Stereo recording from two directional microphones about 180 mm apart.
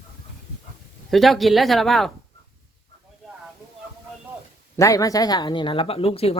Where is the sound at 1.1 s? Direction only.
Centre (ahead or behind).